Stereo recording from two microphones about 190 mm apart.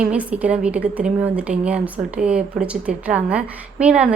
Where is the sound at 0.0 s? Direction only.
5° right (ahead or behind).